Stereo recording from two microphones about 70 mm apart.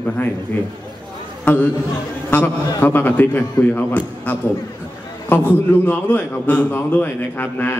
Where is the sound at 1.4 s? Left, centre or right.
Left.